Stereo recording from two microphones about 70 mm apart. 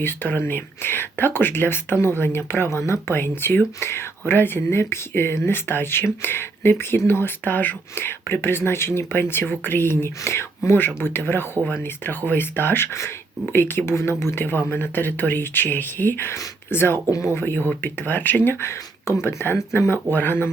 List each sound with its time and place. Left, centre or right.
0.0 s speech: left